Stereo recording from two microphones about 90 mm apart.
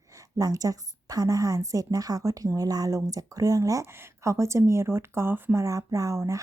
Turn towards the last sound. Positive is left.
turn(degrees=-35)  # may be behind; listen again after turning